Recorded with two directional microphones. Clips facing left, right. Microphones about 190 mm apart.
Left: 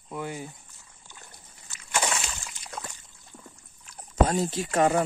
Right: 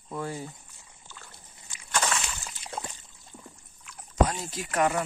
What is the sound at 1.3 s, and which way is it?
Dog, 25° right (ahead or behind).